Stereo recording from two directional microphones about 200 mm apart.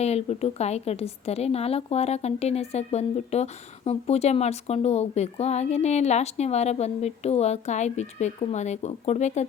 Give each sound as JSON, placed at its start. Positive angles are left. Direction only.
{"t": 0.0, "sound": "a woman's voice", "side_deg": 30}